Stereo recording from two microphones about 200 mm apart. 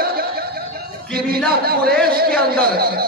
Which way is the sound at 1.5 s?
50° right (ahead or behind).